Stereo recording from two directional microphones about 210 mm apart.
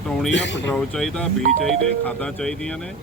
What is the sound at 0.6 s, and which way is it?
Speech, 5° left (ahead or behind).